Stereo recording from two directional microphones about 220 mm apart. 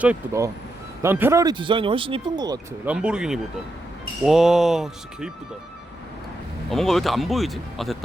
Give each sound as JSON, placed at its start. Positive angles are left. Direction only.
{"t": 0.0, "sound": "speech", "side_deg": -10}
{"t": 2.8, "sound": "speech", "side_deg": -5}
{"t": 6.7, "sound": "speech", "side_deg": 0}